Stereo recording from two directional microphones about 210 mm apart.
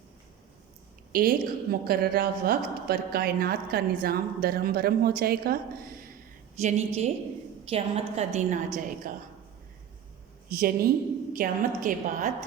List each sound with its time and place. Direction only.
1.1 s a woman's voice: 45° right (ahead or behind)
6.6 s a woman's voice: 30° right (ahead or behind)
10.5 s a woman's voice: 45° right (ahead or behind)